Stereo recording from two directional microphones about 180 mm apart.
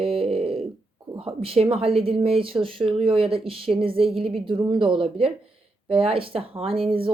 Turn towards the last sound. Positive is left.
turn(degrees=-30)  # may be behind; listen again after turning